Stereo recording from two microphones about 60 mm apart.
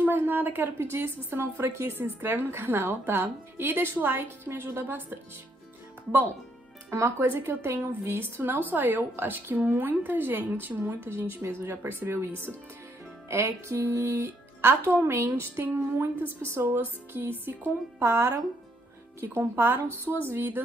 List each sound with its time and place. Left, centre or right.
0.0 s a woman's voice: right
6.9 s a woman's voice: right
13.3 s music: right
13.7 s a woman's voice: right
18.0 s speech: right
19.1 s a woman's voice: right